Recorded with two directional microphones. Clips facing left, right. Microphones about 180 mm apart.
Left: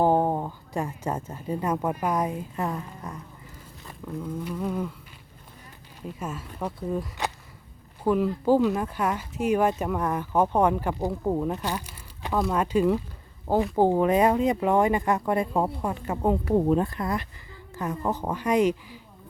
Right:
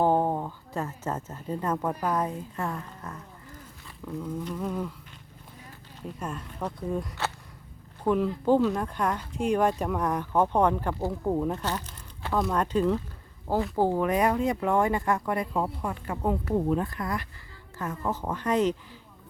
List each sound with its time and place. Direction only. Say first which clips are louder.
0.0 s a woman's voice: left 2 dB; 15° left (ahead or behind)
4.0 s speech: left 1 dB; 5° left (ahead or behind)
6.1 s speech: left 1 dB; 5° left (ahead or behind)
13.7 s speech: left 4 dB; 20° left (ahead or behind)